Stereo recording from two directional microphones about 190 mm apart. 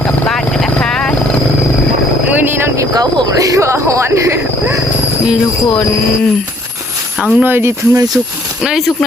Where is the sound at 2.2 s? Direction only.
10° right (ahead or behind).